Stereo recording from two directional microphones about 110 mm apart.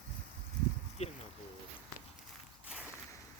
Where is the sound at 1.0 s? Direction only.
75° left (ahead or behind).